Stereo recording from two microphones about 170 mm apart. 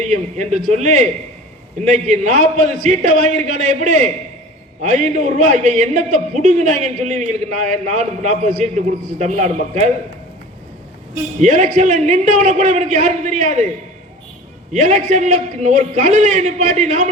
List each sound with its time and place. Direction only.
0.0 s a man's voice: 45° right (ahead or behind)
11.3 s a man's voice: 45° right (ahead or behind)
14.7 s a man's voice: 45° right (ahead or behind)